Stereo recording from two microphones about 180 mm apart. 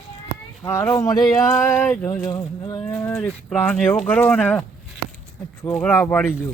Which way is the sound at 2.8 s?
5° left (ahead or behind).